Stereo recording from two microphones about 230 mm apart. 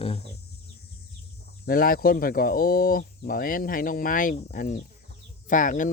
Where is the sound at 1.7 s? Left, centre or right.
Left.